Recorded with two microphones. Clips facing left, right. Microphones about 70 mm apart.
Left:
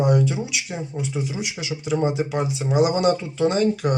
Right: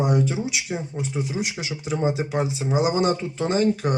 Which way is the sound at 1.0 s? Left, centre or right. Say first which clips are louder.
Right 1 dB; right.